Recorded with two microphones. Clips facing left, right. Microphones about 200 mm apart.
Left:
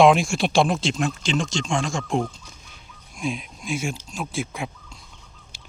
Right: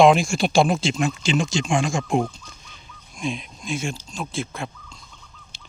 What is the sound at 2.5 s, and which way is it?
Speech, 5° left (ahead or behind).